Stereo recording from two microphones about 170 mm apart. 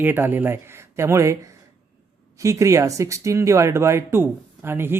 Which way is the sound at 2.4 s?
20° right (ahead or behind).